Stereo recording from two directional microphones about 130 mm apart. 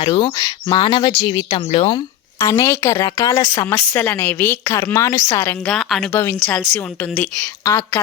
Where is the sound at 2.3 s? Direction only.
25° left (ahead or behind).